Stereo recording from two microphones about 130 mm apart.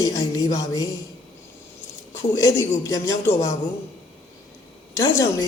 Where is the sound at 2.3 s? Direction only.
25° left (ahead or behind).